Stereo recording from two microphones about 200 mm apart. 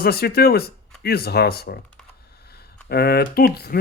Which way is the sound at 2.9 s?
50° left (ahead or behind).